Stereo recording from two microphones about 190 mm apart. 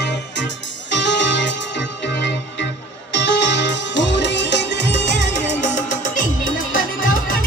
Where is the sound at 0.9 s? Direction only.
70° left (ahead or behind).